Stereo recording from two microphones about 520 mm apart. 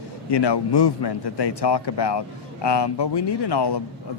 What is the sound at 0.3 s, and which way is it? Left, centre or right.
A man's voice, left.